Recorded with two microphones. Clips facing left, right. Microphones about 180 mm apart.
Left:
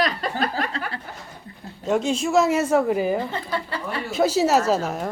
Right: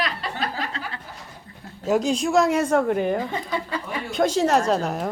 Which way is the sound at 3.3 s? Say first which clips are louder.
Right 1 dB; 15° right (ahead or behind).